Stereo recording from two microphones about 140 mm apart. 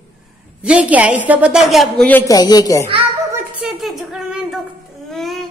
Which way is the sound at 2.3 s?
30° left (ahead or behind).